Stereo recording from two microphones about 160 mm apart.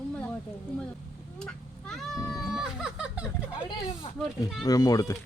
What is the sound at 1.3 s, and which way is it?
Speech, 5° left (ahead or behind).